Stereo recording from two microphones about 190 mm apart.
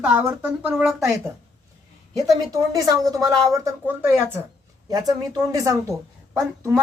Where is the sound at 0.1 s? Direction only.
10° right (ahead or behind).